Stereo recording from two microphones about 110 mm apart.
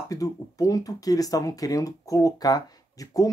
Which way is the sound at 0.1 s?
30° left (ahead or behind).